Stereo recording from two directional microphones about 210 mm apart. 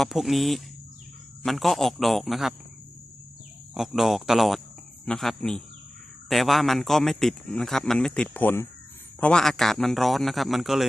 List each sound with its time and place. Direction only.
0.0 s a man's voice: centre (ahead or behind)
3.8 s a man's voice: centre (ahead or behind)